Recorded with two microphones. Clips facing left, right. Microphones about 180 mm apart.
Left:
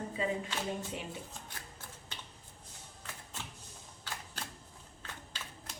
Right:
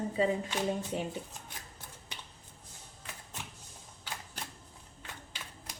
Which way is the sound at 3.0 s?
15° right (ahead or behind).